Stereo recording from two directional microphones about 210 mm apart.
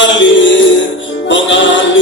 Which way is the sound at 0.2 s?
60° left (ahead or behind).